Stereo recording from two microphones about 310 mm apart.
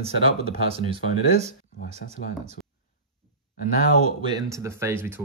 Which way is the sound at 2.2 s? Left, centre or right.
Left.